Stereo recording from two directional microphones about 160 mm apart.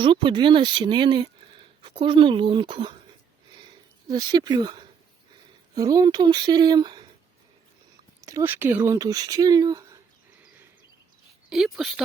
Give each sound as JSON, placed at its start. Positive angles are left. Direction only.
{"t": 0.0, "sound": "speech", "side_deg": -30}
{"t": 4.1, "sound": "speech", "side_deg": -25}
{"t": 8.2, "sound": "speech", "side_deg": -20}
{"t": 11.4, "sound": "speech", "side_deg": 0}